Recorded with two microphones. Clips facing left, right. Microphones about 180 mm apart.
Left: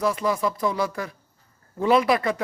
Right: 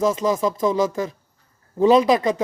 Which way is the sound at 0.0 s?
20° right (ahead or behind).